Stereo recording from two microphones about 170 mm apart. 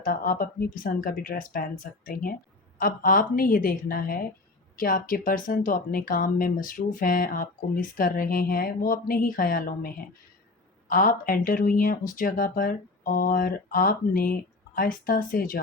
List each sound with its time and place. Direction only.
0.0 s speech: 55° left (ahead or behind)